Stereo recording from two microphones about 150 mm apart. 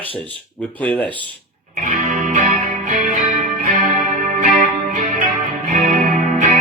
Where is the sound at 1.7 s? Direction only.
60° right (ahead or behind).